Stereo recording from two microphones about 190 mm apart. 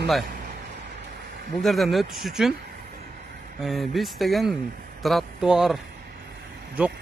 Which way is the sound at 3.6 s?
Centre (ahead or behind).